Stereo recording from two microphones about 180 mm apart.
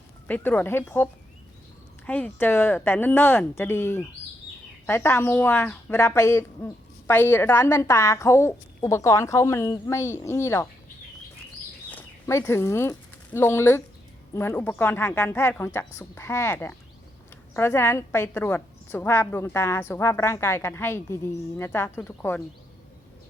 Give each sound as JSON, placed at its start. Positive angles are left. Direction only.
{"t": 0.3, "sound": "a woman's voice", "side_deg": 10}
{"t": 11.9, "sound": "a woman's voice", "side_deg": 10}